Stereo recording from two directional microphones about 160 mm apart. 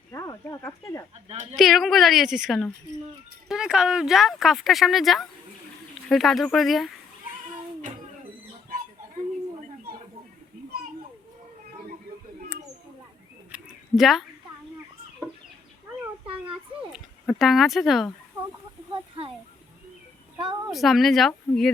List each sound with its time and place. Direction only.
0.1 s speech: 20° left (ahead or behind)
1.5 s speech: centre (ahead or behind)
8.7 s fowl: 60° right (ahead or behind)
13.5 s a sound: 5° right (ahead or behind)
16.2 s children playing: 35° right (ahead or behind)
16.9 s speech: centre (ahead or behind)
20.7 s speech: centre (ahead or behind)